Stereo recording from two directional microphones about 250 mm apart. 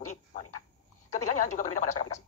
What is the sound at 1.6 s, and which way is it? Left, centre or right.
Speech, left.